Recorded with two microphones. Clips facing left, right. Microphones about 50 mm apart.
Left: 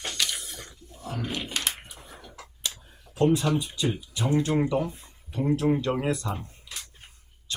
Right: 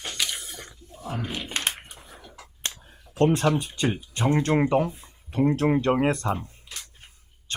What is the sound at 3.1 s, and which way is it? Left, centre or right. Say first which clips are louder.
Speech: right 2 dB; right.